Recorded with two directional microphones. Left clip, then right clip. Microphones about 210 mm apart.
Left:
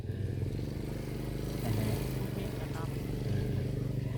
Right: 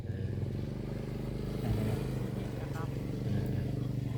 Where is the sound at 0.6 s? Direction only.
55° left (ahead or behind); by 3.2 s 35° left (ahead or behind).